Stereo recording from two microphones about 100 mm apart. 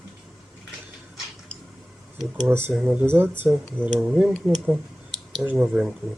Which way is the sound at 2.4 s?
20° right (ahead or behind).